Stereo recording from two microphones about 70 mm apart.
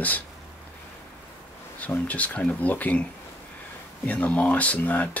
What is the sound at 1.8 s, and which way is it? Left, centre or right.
Speech, left.